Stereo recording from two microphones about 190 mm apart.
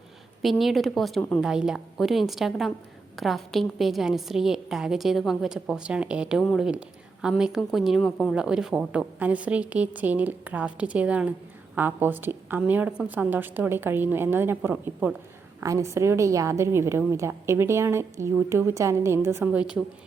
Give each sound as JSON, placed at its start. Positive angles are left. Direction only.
{"t": 0.4, "sound": "a woman's voice", "side_deg": 0}